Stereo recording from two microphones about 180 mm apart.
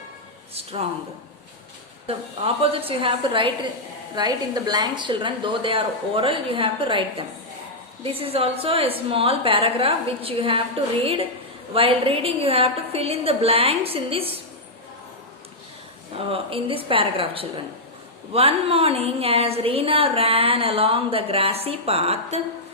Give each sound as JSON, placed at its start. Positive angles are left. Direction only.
{"t": 0.5, "sound": "a sound", "side_deg": -35}
{"t": 2.6, "sound": "a woman's voice", "side_deg": -30}
{"t": 16.1, "sound": "a woman's voice", "side_deg": -30}